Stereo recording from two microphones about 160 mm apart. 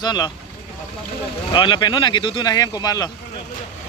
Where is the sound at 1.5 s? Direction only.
30° left (ahead or behind).